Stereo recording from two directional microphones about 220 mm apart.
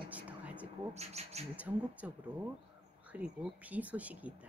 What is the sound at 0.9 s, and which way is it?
Speech, 30° right (ahead or behind).